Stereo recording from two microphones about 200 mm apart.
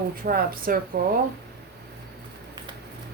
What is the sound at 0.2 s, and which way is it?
Speech, 45° right (ahead or behind).